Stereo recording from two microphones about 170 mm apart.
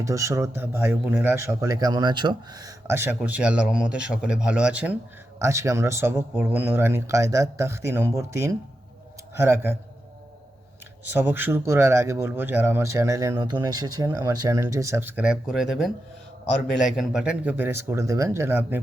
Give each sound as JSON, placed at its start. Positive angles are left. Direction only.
{"t": 0.0, "sound": "a man's voice", "side_deg": -20}
{"t": 11.0, "sound": "a man's voice", "side_deg": -10}
{"t": 17.0, "sound": "a man's voice", "side_deg": -5}